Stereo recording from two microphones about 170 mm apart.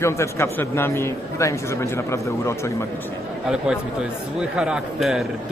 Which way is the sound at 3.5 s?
5° right (ahead or behind).